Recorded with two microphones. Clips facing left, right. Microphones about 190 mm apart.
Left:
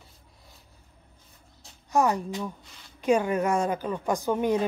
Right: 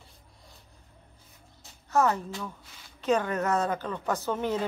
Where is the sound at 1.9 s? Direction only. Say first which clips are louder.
Left 1 dB; 15° left (ahead or behind).